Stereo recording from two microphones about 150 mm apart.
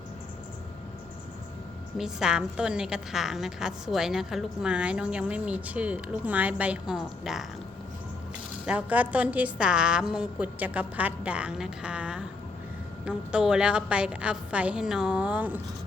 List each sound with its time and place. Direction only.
2.0 s a woman's voice: 5° right (ahead or behind)
8.6 s a woman's voice: 10° right (ahead or behind)